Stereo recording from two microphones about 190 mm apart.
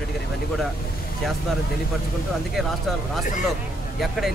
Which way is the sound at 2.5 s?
Centre (ahead or behind).